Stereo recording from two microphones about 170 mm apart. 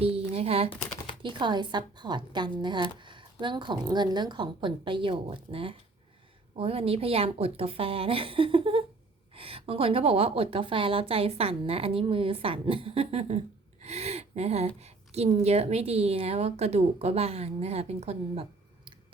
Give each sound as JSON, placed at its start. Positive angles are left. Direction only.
{"t": 0.0, "sound": "a sound", "side_deg": -35}
{"t": 1.2, "sound": "a woman's voice", "side_deg": -25}
{"t": 13.8, "sound": "gasp", "side_deg": -40}
{"t": 14.8, "sound": "a woman's voice", "side_deg": -40}